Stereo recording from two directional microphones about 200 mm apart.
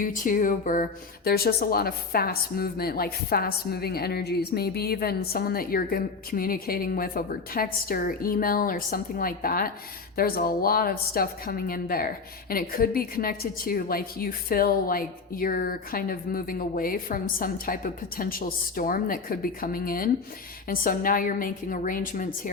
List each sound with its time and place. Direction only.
0.0 s speech: 40° left (ahead or behind)